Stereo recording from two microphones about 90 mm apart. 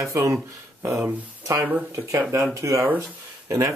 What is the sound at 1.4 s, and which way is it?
Speech, 35° right (ahead or behind).